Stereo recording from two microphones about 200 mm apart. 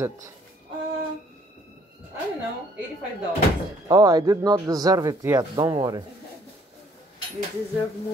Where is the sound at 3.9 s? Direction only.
20° right (ahead or behind).